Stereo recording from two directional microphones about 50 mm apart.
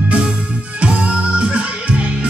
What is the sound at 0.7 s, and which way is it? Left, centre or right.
Music, right.